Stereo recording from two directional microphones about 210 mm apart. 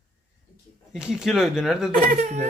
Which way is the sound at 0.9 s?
5° right (ahead or behind).